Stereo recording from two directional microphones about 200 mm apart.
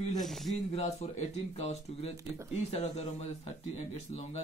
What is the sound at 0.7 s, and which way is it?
Speech, 35° left (ahead or behind).